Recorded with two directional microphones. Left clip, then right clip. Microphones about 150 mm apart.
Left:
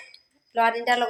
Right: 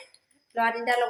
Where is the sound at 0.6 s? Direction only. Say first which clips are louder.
Left 3 dB; 40° left (ahead or behind).